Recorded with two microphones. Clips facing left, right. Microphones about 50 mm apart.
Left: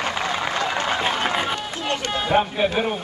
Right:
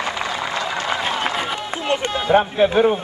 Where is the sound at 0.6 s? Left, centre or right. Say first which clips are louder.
Left 1 dB; left.